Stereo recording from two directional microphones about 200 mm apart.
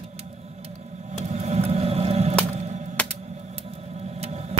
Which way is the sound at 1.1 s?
35° right (ahead or behind).